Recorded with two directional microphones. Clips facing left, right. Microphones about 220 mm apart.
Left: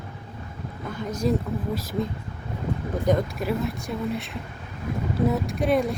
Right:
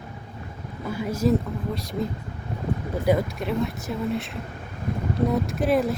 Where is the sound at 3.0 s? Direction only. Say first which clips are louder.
Right 1 dB; centre (ahead or behind).